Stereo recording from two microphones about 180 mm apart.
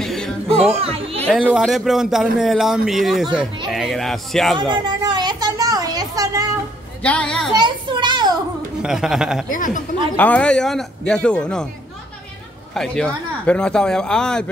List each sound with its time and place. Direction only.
0.0 s music: centre (ahead or behind)
0.7 s a child's voice: 35° right (ahead or behind)
1.3 s speech: 5° right (ahead or behind)
4.6 s a sound: 25° right (ahead or behind)
7.0 s a woman's voice: 5° left (ahead or behind)
7.5 s children playing: 25° right (ahead or behind)
8.8 s speech: 5° right (ahead or behind)
9.5 s speech: 45° left (ahead or behind)
10.1 s speech: 10° left (ahead or behind)
12.7 s speech: 5° left (ahead or behind)